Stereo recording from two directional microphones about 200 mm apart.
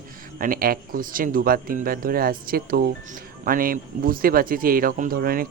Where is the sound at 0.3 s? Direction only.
45° right (ahead or behind).